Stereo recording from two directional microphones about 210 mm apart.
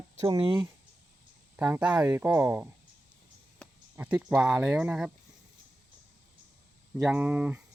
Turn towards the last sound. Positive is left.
turn(degrees=-10)  # may be behind; listen again after turning